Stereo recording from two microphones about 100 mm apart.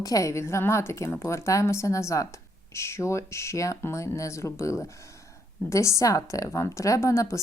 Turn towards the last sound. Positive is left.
turn(degrees=30)  # may be behind; listen again after turning